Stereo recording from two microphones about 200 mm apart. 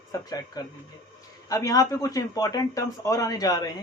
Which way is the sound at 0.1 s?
20° left (ahead or behind).